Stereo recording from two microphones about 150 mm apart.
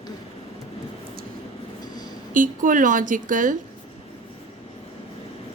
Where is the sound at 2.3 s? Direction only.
60° right (ahead or behind).